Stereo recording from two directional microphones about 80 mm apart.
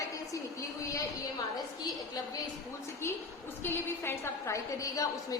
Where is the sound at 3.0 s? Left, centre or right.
Left.